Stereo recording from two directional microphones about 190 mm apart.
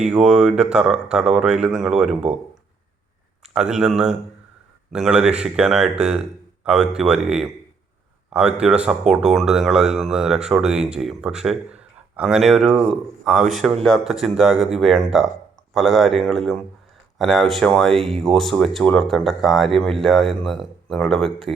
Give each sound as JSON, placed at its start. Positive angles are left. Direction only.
{"t": 0.0, "sound": "speech", "side_deg": -5}
{"t": 3.4, "sound": "a man's voice", "side_deg": -5}
{"t": 17.9, "sound": "speech", "side_deg": -30}
{"t": 18.2, "sound": "speech", "side_deg": 0}